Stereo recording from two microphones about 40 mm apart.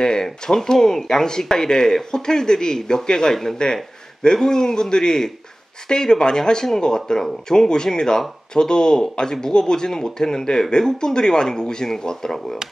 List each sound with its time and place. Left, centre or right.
0.0 s speech: centre